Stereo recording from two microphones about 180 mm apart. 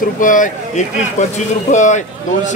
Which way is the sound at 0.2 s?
45° left (ahead or behind).